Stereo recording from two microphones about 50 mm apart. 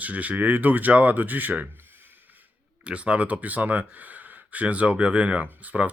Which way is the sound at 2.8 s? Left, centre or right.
Right.